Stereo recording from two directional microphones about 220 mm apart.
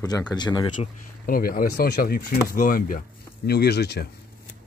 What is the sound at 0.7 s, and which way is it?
Speech, 40° left (ahead or behind).